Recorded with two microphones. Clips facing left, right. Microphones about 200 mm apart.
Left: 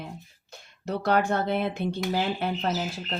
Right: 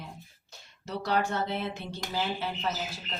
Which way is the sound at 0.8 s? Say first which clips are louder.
Left 5 dB; 55° left (ahead or behind).